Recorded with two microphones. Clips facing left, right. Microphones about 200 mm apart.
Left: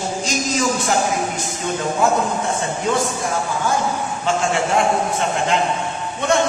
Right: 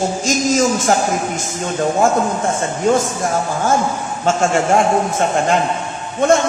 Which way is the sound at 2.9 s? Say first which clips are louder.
Right 5 dB; 45° right (ahead or behind).